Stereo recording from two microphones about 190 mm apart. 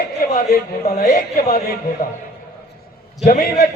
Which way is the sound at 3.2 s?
50° left (ahead or behind).